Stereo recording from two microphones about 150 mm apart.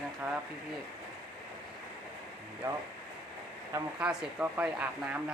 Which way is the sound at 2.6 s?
15° right (ahead or behind).